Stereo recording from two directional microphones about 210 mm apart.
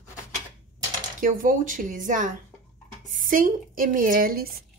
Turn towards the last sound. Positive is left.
turn(degrees=-45)  # may be behind; listen again after turning